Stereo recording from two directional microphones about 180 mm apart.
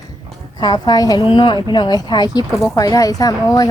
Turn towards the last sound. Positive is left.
turn(degrees=20)  # may be behind; listen again after turning